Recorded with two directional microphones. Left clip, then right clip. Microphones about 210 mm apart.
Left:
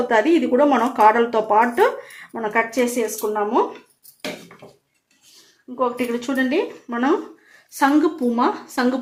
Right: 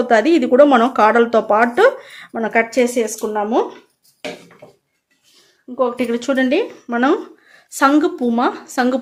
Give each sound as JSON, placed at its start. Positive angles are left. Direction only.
{"t": 0.1, "sound": "speech", "side_deg": -50}
{"t": 5.7, "sound": "speech", "side_deg": -60}
{"t": 7.8, "sound": "a woman's voice", "side_deg": -40}